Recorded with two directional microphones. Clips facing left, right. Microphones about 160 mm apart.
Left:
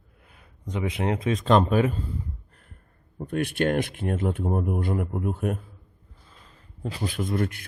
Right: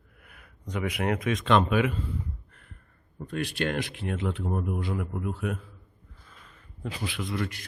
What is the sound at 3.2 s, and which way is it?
A man's voice, 55° left (ahead or behind).